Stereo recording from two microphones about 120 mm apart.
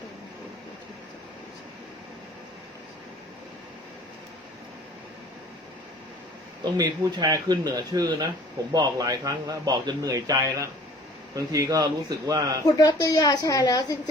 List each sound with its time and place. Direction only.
6.6 s a man's voice: 35° right (ahead or behind)
12.6 s a woman's voice: 30° left (ahead or behind)